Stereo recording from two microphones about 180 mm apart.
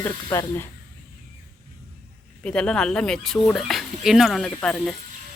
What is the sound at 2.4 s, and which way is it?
Speech, 5° left (ahead or behind).